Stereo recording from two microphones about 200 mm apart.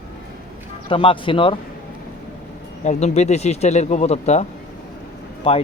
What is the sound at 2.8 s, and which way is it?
Speech, 35° left (ahead or behind).